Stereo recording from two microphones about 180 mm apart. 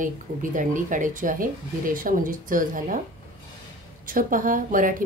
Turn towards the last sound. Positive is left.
turn(degrees=-50)  # may be behind; listen again after turning